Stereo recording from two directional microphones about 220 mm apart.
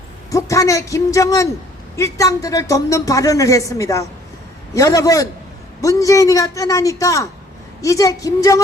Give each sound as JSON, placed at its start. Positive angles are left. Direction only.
{"t": 0.3, "sound": "speech", "side_deg": 15}